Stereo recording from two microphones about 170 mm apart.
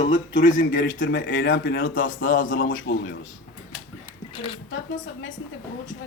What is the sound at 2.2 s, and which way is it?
Speech, 55° left (ahead or behind).